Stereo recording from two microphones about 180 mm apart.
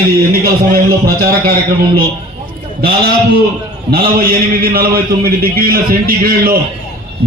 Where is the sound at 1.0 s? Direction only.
55° right (ahead or behind).